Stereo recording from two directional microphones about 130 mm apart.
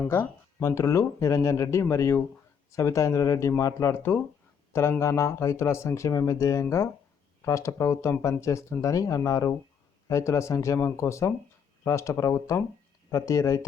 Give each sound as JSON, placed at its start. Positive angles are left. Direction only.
{"t": 0.1, "sound": "speech", "side_deg": 20}